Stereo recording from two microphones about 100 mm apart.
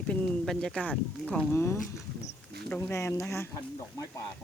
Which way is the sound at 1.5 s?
25° left (ahead or behind).